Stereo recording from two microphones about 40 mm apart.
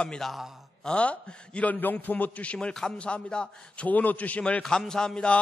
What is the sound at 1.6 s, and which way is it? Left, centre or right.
Speech, left.